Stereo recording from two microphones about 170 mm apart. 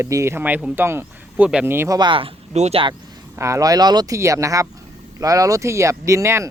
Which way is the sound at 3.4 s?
20° right (ahead or behind).